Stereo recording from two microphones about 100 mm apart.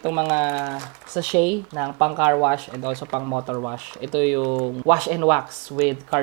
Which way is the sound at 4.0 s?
10° right (ahead or behind).